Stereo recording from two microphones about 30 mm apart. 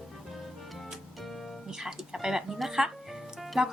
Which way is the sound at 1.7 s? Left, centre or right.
Right.